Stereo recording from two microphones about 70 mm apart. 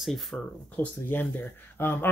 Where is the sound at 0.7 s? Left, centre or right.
Left.